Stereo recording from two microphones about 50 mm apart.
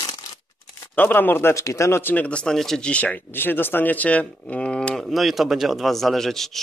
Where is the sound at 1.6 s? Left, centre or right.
Left.